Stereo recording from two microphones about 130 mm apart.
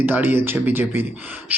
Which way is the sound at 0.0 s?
15° right (ahead or behind).